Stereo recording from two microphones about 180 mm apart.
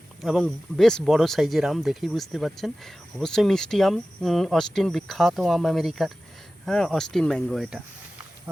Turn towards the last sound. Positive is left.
turn(degrees=0)  # may be behind; listen again after turning